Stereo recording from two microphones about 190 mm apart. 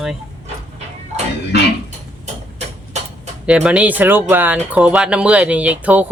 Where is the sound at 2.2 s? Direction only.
35° right (ahead or behind).